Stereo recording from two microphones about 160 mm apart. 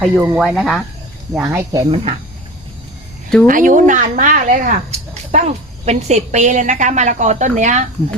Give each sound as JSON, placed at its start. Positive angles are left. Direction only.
{"t": 0.0, "sound": "speech", "side_deg": -5}
{"t": 1.3, "sound": "speech", "side_deg": -15}
{"t": 3.4, "sound": "speech", "side_deg": -55}